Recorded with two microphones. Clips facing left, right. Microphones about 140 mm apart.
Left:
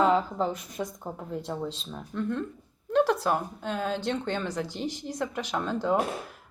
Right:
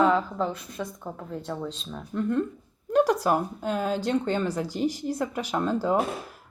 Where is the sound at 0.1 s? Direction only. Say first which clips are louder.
Even; 25° left (ahead or behind).